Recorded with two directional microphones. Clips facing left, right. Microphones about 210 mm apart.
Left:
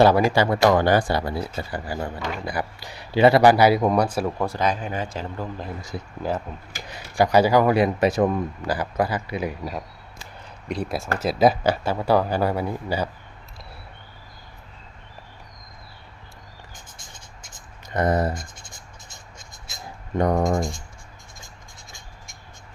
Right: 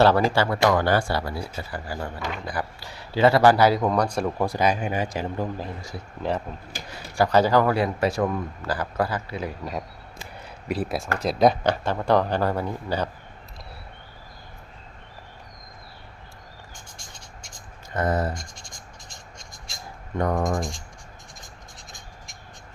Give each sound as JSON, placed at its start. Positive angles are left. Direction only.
{"t": 0.0, "sound": "speech", "side_deg": 15}
{"t": 4.4, "sound": "speech", "side_deg": -10}
{"t": 6.9, "sound": "speech", "side_deg": 15}
{"t": 10.7, "sound": "speech", "side_deg": -5}
{"t": 17.9, "sound": "speech", "side_deg": 15}
{"t": 18.3, "sound": "scratch", "side_deg": 5}
{"t": 20.1, "sound": "speech", "side_deg": 20}